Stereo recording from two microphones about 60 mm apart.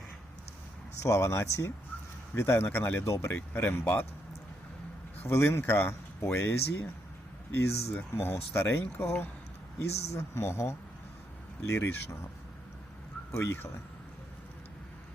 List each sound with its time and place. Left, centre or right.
1.0 s speech: left
2.3 s speech: left
3.0 s speech: left
3.3 s speech: left
3.8 s speech: left
5.2 s speech: left
13.3 s speech: left